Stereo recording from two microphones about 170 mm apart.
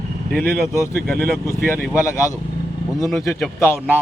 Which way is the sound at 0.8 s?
15° left (ahead or behind).